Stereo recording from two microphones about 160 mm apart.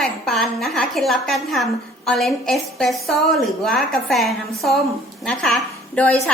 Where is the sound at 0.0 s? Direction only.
Centre (ahead or behind).